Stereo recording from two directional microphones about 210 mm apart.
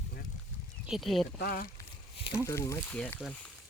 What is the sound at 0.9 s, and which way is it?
Speech, centre (ahead or behind).